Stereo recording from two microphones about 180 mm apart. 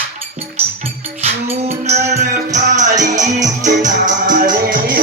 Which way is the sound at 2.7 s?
40° right (ahead or behind).